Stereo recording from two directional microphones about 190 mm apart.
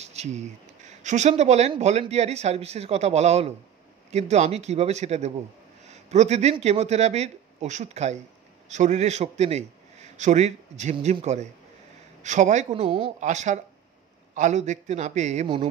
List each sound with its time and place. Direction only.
0.0 s a man's voice: 35° right (ahead or behind)